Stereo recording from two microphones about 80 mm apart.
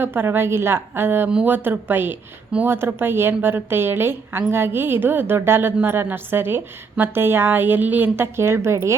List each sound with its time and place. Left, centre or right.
0.0 s a woman's voice: right